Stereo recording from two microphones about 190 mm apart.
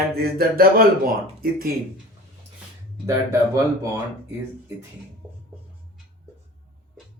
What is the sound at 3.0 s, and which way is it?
Speech, 15° right (ahead or behind).